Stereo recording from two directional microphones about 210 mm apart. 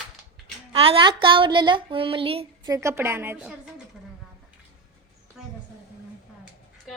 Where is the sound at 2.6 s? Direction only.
15° right (ahead or behind).